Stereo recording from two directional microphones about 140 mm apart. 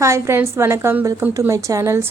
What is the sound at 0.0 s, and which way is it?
Speech, 20° right (ahead or behind).